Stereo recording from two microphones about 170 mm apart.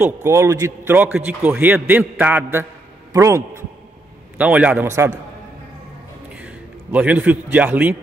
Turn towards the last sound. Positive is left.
turn(degrees=-10)  # may be behind; listen again after turning